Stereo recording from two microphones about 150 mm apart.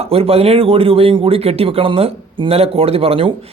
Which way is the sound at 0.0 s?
40° right (ahead or behind).